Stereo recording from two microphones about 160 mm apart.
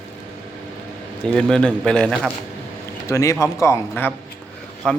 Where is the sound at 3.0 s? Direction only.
20° left (ahead or behind).